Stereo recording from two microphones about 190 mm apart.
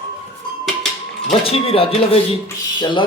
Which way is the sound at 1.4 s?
30° left (ahead or behind).